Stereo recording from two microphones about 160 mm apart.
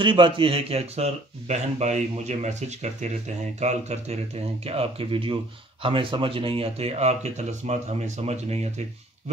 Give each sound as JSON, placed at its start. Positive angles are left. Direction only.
{"t": 0.0, "sound": "speech", "side_deg": -30}